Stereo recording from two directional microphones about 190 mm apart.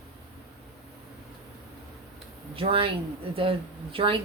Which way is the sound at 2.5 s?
30° right (ahead or behind).